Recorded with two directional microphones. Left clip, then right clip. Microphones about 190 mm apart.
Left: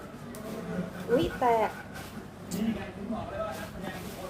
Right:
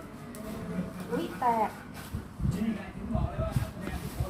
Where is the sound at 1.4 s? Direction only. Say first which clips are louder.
Left 1 dB; 50° left (ahead or behind).